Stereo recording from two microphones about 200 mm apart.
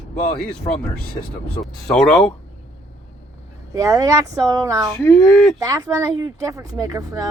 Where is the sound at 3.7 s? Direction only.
15° right (ahead or behind).